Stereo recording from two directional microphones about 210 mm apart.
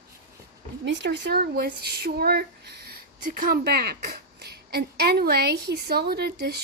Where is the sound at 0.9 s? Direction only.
55° right (ahead or behind).